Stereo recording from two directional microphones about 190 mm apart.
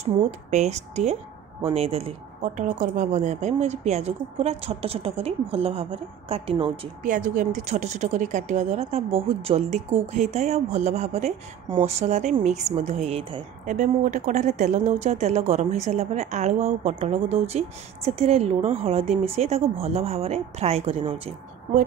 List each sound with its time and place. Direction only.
0.0 s speech: 35° right (ahead or behind)
7.0 s speech: 40° right (ahead or behind)